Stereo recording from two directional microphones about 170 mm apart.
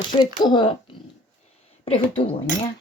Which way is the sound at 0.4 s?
30° left (ahead or behind).